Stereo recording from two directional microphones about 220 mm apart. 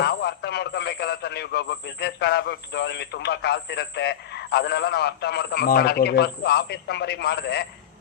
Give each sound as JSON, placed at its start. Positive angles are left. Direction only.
{"t": 0.0, "sound": "a man's voice", "side_deg": 50}